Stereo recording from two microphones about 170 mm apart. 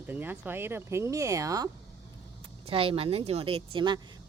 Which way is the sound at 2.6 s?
35° right (ahead or behind).